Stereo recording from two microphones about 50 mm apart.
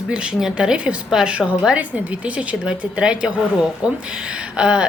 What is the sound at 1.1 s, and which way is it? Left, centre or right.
Speech, centre.